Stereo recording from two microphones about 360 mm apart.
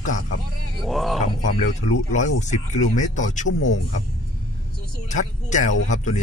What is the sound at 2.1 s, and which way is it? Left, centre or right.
Speech, centre.